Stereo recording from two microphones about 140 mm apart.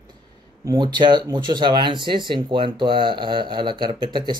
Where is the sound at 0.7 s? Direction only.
30° right (ahead or behind).